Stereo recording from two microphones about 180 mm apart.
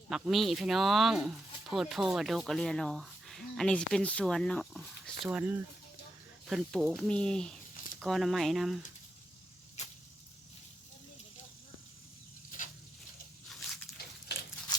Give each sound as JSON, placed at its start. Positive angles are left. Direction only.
{"t": 0.1, "sound": "speech", "side_deg": 0}
{"t": 5.2, "sound": "speech", "side_deg": -10}
{"t": 6.5, "sound": "speech", "side_deg": 0}
{"t": 9.8, "sound": "arrow", "side_deg": 40}
{"t": 12.5, "sound": "a sound", "side_deg": 45}